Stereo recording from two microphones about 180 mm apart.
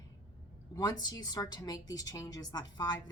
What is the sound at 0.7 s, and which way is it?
A woman's voice, 20° left (ahead or behind).